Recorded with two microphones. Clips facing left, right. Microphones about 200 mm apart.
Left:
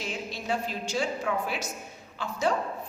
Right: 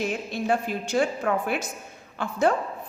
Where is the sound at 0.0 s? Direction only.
55° right (ahead or behind).